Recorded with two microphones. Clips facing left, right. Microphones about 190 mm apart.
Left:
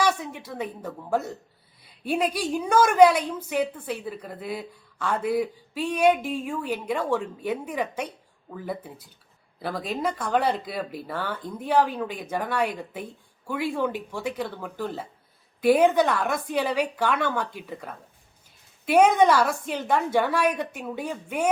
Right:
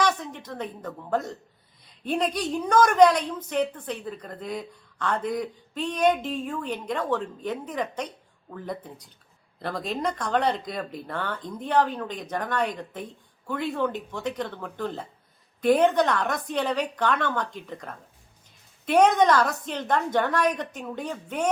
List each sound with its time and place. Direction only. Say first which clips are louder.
0.0 s a woman's voice: left 1 dB; 10° left (ahead or behind)